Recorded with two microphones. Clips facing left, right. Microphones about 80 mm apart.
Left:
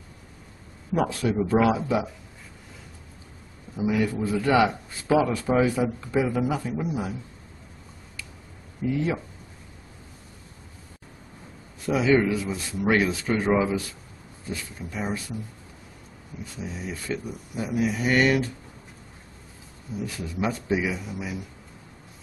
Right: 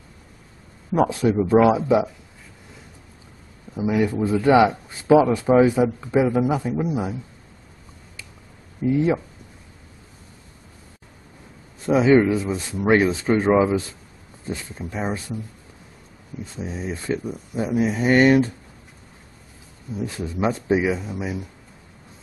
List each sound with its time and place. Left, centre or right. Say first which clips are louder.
0.9 s speech: right 5 dB; right
3.7 s speech: right 3 dB; right
8.8 s speech: right 6 dB; right
11.8 s speech: right 5 dB; right
16.5 s speech: right 5 dB; right
20.1 s speech: right 5 dB; right